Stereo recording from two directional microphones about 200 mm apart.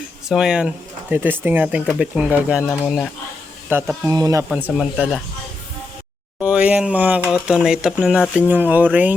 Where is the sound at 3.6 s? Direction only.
10° right (ahead or behind).